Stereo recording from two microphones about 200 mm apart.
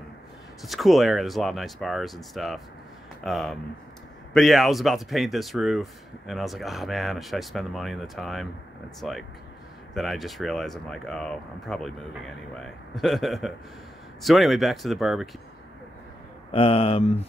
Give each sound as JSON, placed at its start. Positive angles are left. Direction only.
{"t": 0.6, "sound": "speech", "side_deg": 0}
{"t": 16.5, "sound": "speech", "side_deg": 30}